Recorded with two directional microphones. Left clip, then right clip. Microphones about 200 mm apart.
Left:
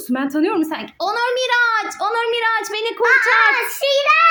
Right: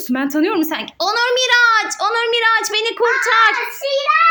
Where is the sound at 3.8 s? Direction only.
45° left (ahead or behind).